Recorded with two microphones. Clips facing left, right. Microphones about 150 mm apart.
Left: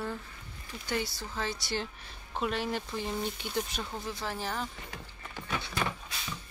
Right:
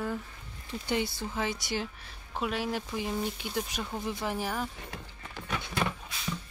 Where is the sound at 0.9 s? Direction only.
20° right (ahead or behind).